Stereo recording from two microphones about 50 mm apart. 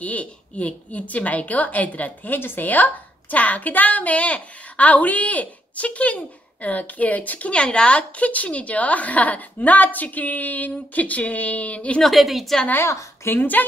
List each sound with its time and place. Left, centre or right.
0.0 s a woman's voice: left
12.0 s a woman's voice: centre
12.8 s a woman's voice: left
13.3 s a woman's voice: left